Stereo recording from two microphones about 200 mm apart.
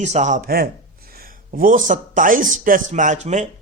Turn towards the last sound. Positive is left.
turn(degrees=-35)  # may be behind; listen again after turning